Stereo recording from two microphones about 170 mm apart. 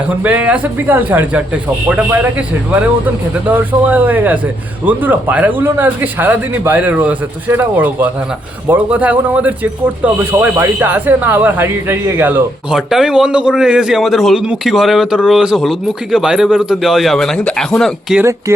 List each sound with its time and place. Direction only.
0.2 s speech: 10° right (ahead or behind)
3.8 s a man's voice: 10° right (ahead or behind)
18.2 s speech: 15° right (ahead or behind)